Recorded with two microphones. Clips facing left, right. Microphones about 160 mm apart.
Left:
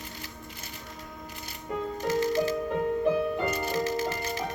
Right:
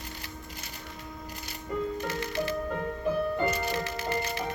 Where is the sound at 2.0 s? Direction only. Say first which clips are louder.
Left 6 dB; 40° left (ahead or behind).